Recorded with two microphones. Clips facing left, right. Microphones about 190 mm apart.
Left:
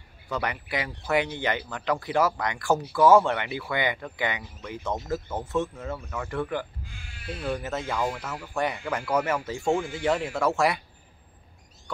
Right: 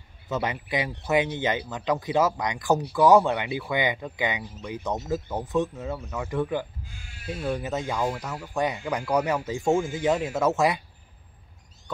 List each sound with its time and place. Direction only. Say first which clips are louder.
0.3 s speech: right 2 dB; 20° right (ahead or behind)